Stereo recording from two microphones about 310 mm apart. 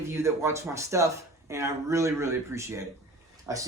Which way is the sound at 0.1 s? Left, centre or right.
Centre.